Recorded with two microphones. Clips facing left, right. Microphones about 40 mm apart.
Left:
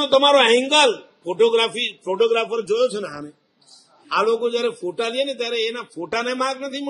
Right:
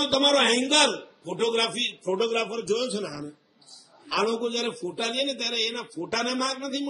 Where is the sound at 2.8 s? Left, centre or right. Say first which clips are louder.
Left 8 dB; centre.